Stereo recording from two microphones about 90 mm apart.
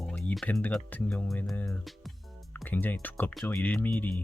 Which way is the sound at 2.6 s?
20° left (ahead or behind).